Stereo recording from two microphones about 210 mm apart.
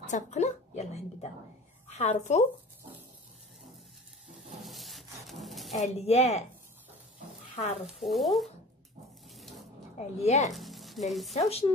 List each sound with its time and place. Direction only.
0.0 s a woman's voice: 35° left (ahead or behind)
4.3 s a sound: centre (ahead or behind)
5.9 s a woman's voice: 30° left (ahead or behind)
8.0 s stir: centre (ahead or behind)
9.3 s sink: centre (ahead or behind)
9.9 s a woman's voice: 30° left (ahead or behind)
10.5 s sizzle: centre (ahead or behind)
11.1 s stir: centre (ahead or behind)
11.3 s speech: 30° left (ahead or behind)